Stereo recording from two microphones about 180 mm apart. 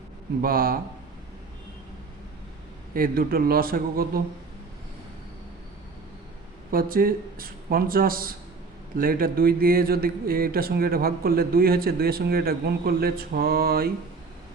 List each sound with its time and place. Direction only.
0.4 s a man's voice: 55° right (ahead or behind)
2.9 s speech: 55° right (ahead or behind)
6.7 s a man's voice: 55° right (ahead or behind)